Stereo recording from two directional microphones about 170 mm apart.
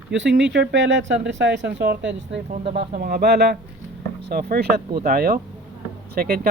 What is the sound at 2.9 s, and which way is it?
Speech, 65° right (ahead or behind).